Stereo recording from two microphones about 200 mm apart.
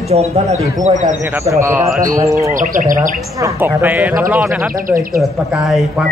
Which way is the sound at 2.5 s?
40° right (ahead or behind).